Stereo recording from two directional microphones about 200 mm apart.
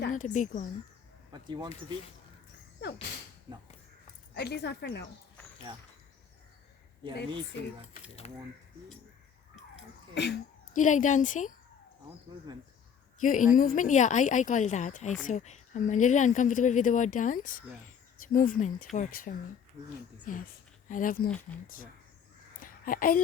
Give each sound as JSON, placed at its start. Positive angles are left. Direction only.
{"t": 0.1, "sound": "speech", "side_deg": 40}
{"t": 1.3, "sound": "speech", "side_deg": -20}
{"t": 2.8, "sound": "speech", "side_deg": 60}
{"t": 4.4, "sound": "speech", "side_deg": 55}
{"t": 7.0, "sound": "speech", "side_deg": -25}
{"t": 8.2, "sound": "speech", "side_deg": 30}
{"t": 10.2, "sound": "speech", "side_deg": 60}
{"t": 10.8, "sound": "speech", "side_deg": 40}
{"t": 12.5, "sound": "speech", "side_deg": -20}
{"t": 13.1, "sound": "speech", "side_deg": 40}
{"t": 22.6, "sound": "a sound", "side_deg": 45}